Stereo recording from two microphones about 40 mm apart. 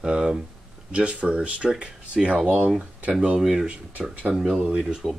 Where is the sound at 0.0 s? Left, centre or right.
Right.